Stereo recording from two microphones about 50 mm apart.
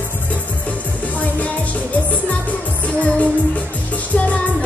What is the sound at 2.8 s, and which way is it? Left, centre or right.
Music, left.